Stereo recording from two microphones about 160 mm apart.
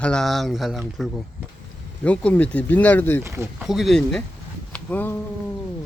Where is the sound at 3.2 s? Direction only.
15° right (ahead or behind).